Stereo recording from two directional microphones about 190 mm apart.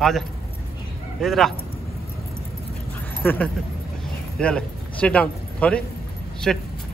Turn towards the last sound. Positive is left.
turn(degrees=0)  # may be behind; listen again after turning